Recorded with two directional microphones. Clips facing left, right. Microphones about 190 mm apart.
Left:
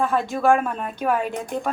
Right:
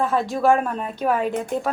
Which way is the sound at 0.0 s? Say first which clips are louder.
Right 1 dB; centre (ahead or behind).